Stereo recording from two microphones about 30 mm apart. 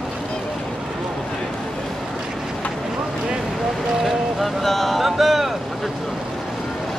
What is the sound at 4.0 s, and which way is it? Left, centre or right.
Boat, centre.